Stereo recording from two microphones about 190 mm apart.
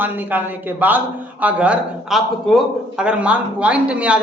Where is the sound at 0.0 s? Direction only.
10° right (ahead or behind).